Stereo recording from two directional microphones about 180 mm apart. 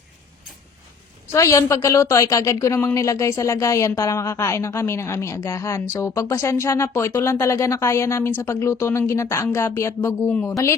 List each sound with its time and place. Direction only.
1.3 s a woman's voice: 15° left (ahead or behind)